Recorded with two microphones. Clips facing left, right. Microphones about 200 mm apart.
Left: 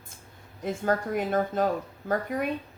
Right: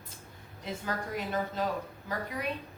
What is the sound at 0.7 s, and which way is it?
Speech, 50° left (ahead or behind).